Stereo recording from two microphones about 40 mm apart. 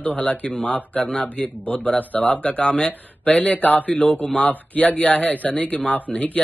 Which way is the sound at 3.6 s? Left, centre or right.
Left.